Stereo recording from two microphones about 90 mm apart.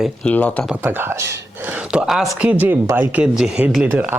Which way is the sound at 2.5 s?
20° right (ahead or behind).